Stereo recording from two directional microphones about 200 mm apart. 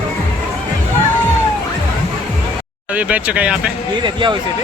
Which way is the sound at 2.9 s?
5° right (ahead or behind).